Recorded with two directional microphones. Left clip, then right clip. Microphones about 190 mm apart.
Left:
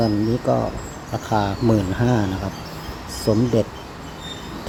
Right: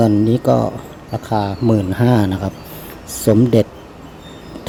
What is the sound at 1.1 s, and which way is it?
Speech, 20° right (ahead or behind).